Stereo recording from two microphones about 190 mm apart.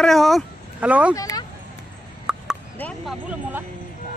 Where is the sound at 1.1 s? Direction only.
20° left (ahead or behind).